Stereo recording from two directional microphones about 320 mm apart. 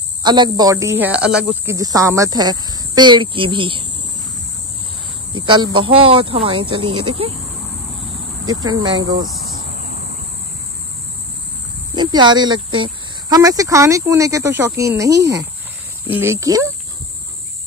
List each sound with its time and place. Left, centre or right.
0.2 s speech: centre
5.4 s speech: centre
8.5 s speech: centre
11.9 s speech: centre